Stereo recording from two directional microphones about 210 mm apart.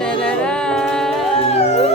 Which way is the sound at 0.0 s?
5° left (ahead or behind).